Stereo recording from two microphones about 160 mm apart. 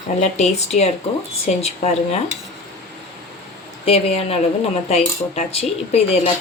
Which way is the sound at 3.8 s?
40° left (ahead or behind).